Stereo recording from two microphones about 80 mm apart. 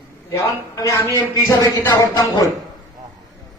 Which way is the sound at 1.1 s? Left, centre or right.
Left.